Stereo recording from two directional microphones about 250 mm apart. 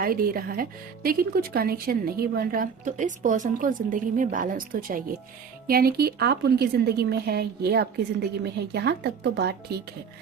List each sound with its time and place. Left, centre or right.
0.0 s speech: right